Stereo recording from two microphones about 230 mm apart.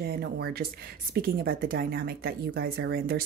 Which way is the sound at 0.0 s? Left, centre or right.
Right.